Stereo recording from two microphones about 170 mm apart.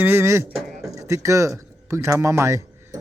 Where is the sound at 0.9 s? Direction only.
20° right (ahead or behind).